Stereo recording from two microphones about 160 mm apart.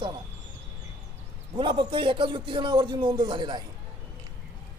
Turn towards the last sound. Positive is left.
turn(degrees=-30)  # may be behind; listen again after turning